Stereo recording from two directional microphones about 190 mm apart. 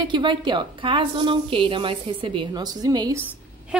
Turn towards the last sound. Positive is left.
turn(degrees=-20)  # may be behind; listen again after turning